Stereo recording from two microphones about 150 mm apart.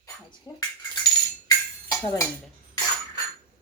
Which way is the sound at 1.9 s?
20° left (ahead or behind).